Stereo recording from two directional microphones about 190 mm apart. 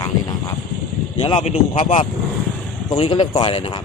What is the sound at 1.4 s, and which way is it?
Speech, 30° left (ahead or behind).